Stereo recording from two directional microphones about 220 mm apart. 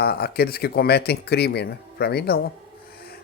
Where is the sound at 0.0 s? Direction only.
45° left (ahead or behind).